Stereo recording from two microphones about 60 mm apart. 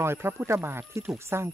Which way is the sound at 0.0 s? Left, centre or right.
Right.